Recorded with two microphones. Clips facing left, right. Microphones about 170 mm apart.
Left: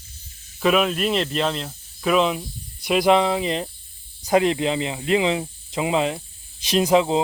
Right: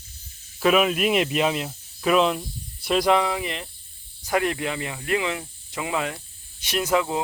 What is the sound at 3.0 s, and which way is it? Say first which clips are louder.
Speech: left 5 dB; 25° left (ahead or behind).